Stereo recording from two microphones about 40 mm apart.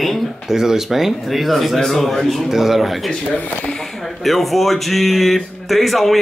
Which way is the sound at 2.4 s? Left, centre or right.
Centre.